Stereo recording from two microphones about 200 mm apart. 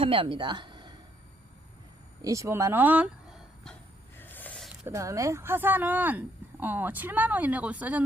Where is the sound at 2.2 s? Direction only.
15° right (ahead or behind).